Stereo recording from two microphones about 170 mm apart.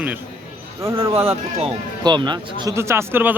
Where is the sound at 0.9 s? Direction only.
35° right (ahead or behind).